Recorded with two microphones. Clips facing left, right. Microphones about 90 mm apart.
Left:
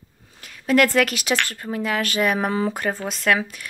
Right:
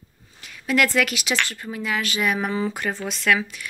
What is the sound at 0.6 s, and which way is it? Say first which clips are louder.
Speech: left 3 dB; 45° left (ahead or behind).